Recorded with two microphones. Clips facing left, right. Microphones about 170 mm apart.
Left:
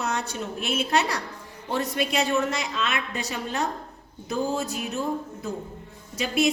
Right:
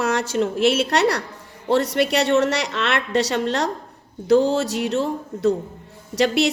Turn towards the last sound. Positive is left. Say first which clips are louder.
# right 6 dB
turn(degrees=-75)  # may be behind; listen again after turning